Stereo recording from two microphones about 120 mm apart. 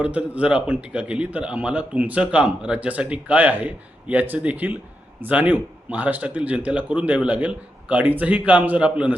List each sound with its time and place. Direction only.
0.0 s speech: 10° right (ahead or behind)